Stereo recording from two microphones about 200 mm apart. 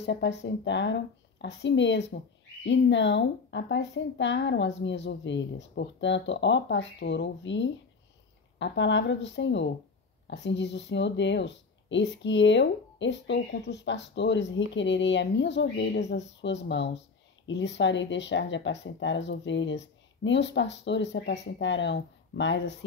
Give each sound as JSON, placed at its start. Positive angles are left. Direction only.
{"t": 0.0, "sound": "speech", "side_deg": 60}